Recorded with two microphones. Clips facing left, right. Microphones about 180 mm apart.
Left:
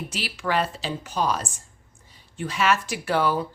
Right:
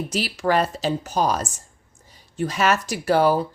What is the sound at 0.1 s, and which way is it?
Speech, 40° right (ahead or behind).